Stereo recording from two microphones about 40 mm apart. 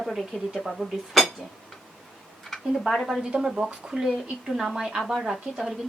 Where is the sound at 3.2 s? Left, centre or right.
Centre.